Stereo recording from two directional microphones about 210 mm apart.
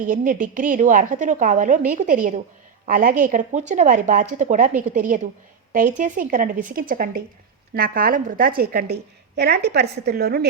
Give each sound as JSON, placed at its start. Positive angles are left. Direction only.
{"t": 0.0, "sound": "a woman's voice", "side_deg": -40}